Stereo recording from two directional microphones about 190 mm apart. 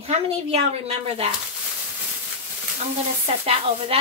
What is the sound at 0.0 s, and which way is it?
A woman's voice, 35° right (ahead or behind).